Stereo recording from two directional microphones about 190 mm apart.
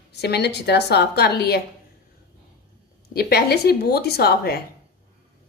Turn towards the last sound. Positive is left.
turn(degrees=55)  # may be behind; listen again after turning